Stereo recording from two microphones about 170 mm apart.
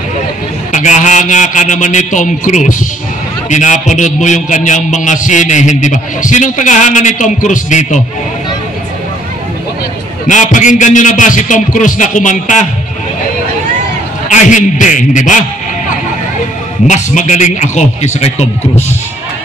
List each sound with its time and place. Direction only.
0.7 s a man's voice: 45° left (ahead or behind)
10.2 s a man's voice: 45° left (ahead or behind)
14.3 s a man's voice: 45° left (ahead or behind)
16.8 s a man's voice: 45° left (ahead or behind)